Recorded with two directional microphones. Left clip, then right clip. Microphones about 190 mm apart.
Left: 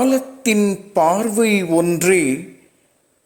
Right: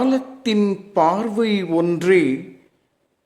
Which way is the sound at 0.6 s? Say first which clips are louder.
Even; 10° left (ahead or behind).